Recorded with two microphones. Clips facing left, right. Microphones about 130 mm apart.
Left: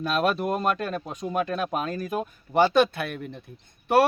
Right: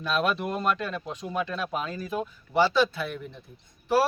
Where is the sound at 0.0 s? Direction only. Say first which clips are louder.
Left 2 dB; 45° left (ahead or behind).